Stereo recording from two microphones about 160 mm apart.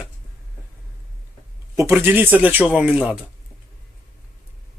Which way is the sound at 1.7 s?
15° right (ahead or behind).